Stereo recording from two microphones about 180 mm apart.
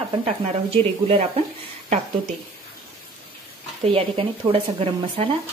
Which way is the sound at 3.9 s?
30° right (ahead or behind).